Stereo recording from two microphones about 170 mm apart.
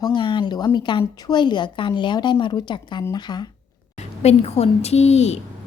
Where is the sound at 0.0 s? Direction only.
30° left (ahead or behind).